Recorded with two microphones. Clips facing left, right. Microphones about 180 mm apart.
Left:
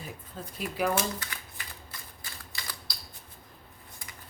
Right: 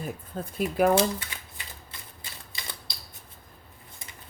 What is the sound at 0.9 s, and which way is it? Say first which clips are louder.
Shuffling cards: right 7 dB; 25° right (ahead or behind).